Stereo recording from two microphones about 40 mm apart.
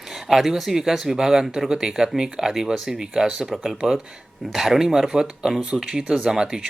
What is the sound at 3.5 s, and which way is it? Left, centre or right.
A man's voice, centre.